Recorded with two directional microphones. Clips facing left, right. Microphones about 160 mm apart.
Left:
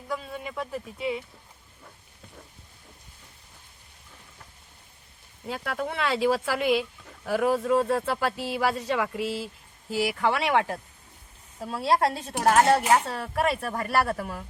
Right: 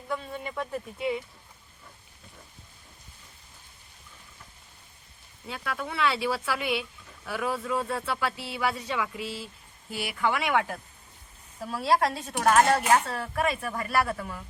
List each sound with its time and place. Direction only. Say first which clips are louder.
0.1 s speech: even; 5° left (ahead or behind)
5.6 s speech: even; 45° left (ahead or behind)
9.1 s speech: left 6 dB; 90° left
10.0 s speech: left 3 dB; 35° left (ahead or behind)